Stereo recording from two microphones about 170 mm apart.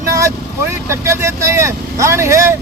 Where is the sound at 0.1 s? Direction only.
20° right (ahead or behind).